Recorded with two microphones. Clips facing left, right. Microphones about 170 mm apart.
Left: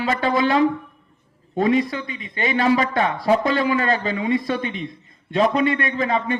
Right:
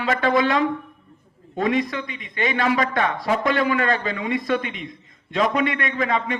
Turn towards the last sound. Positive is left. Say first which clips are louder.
# left 2 dB
turn(degrees=30)  # may be behind; listen again after turning